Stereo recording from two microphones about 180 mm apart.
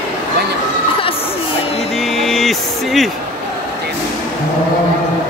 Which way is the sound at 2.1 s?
Centre (ahead or behind).